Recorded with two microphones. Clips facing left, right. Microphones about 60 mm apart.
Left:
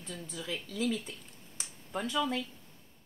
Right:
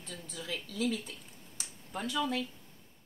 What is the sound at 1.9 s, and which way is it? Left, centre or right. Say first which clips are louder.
Speech: left 2 dB; left.